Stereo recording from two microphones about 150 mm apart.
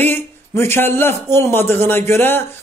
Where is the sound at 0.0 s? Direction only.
15° left (ahead or behind).